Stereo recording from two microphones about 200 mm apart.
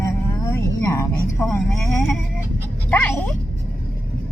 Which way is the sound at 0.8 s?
15° left (ahead or behind).